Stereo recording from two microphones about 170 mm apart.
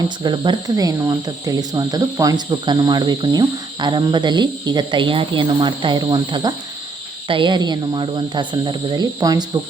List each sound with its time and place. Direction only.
0.2 s speech: 25° right (ahead or behind)